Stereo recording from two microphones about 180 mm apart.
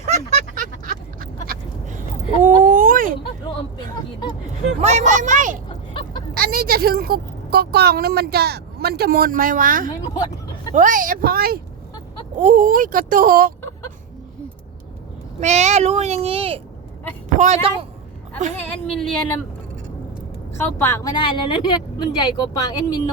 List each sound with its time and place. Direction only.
0.0 s a sound: 40° right (ahead or behind)
4.8 s speech: 40° right (ahead or behind)
5.6 s vehicle: 25° left (ahead or behind)
6.3 s a woman's voice: 55° right (ahead or behind)
12.4 s speech: 45° right (ahead or behind)
15.4 s a child's voice: 40° right (ahead or behind)
20.5 s speech: 15° left (ahead or behind)